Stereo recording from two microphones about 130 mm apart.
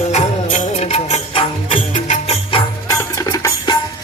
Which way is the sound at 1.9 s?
65° left (ahead or behind).